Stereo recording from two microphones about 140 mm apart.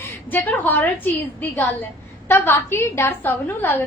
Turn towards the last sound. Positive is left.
turn(degrees=15)  # may be behind; listen again after turning